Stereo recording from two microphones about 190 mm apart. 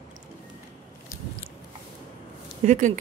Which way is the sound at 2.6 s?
40° right (ahead or behind).